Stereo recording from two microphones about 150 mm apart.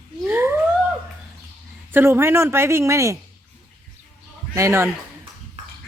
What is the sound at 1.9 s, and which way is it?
A woman's voice, 15° right (ahead or behind).